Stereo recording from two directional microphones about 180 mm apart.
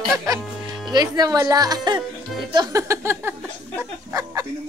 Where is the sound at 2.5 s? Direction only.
20° right (ahead or behind).